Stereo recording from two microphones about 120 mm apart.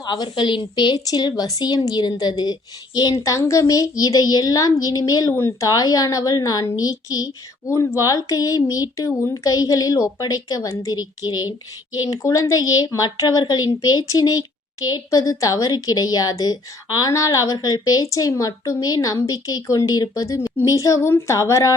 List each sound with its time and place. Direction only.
0.0 s a woman's voice: 40° left (ahead or behind)